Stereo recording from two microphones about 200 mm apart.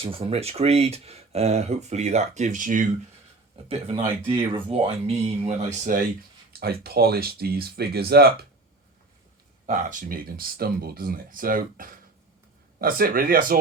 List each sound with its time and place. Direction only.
0.0 s speech: 30° right (ahead or behind)
3.7 s speech: 30° right (ahead or behind)
6.5 s speech: 50° right (ahead or behind)
9.6 s speech: 40° right (ahead or behind)